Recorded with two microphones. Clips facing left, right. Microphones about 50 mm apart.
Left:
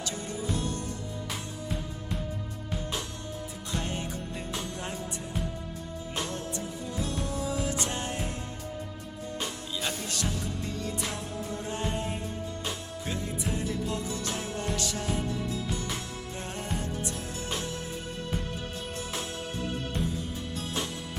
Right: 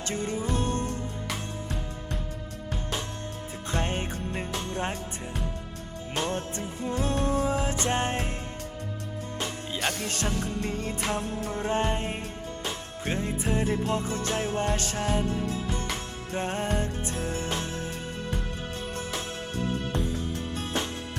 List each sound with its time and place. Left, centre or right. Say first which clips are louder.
0.0 s music: right 4 dB; right
3.7 s music: right 4 dB; right
7.0 s music: right 7 dB; right
9.7 s music: right 4 dB; right
10.1 s music: right 3 dB; right
19.9 s music: right 2 dB; right